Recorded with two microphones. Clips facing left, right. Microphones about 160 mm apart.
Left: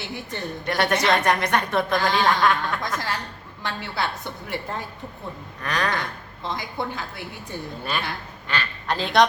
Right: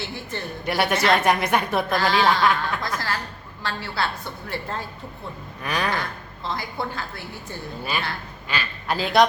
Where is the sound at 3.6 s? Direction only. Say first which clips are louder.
Right 1 dB; 20° left (ahead or behind).